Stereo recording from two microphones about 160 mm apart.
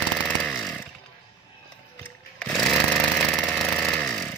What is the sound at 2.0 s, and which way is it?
Chainsaw, 5° left (ahead or behind).